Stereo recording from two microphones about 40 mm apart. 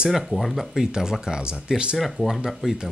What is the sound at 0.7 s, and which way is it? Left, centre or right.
Speech, centre.